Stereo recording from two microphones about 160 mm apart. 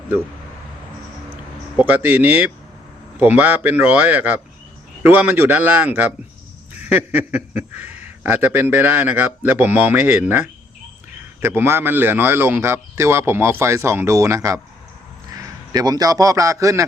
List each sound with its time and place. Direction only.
1.7 s a man's voice: 10° right (ahead or behind)